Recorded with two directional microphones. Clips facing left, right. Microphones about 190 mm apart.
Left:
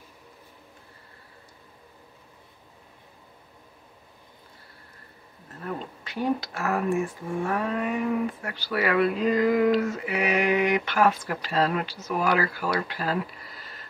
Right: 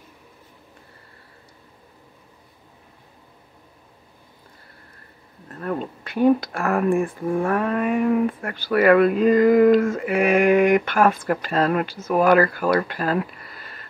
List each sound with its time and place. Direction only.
5.6 s speech: 60° right (ahead or behind)